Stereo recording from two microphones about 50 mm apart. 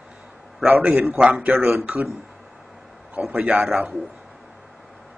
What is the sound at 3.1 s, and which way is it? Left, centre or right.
Speech, right.